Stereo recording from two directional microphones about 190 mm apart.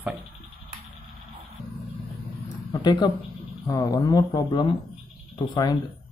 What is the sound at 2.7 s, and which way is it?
Speech, 20° left (ahead or behind).